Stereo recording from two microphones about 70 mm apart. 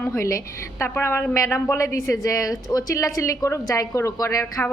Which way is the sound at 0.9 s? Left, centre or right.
Left.